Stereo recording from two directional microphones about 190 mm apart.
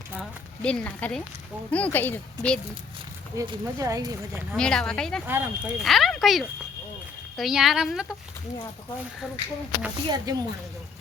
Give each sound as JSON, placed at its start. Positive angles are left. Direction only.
{"t": 0.2, "sound": "a sound", "side_deg": 5}
{"t": 1.7, "sound": "speech", "side_deg": 10}
{"t": 3.3, "sound": "speech", "side_deg": -20}
{"t": 4.5, "sound": "speech", "side_deg": 5}
{"t": 5.2, "sound": "speech", "side_deg": -10}
{"t": 5.8, "sound": "speech", "side_deg": 0}
{"t": 10.1, "sound": "speech", "side_deg": -20}